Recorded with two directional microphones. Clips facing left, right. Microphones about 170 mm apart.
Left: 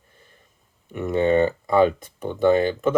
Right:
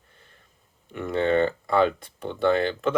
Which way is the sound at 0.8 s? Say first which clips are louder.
Left 4 dB; 20° left (ahead or behind).